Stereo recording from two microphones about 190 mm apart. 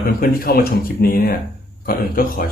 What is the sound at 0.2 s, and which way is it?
A man's voice, 50° left (ahead or behind).